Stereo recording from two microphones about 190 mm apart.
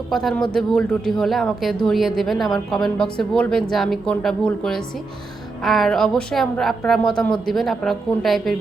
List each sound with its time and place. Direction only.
0.1 s a woman's voice: centre (ahead or behind)